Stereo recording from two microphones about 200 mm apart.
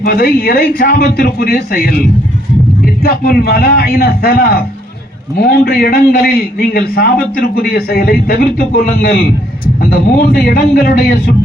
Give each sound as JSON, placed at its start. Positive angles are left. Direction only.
{"t": 0.0, "sound": "a man's voice", "side_deg": 50}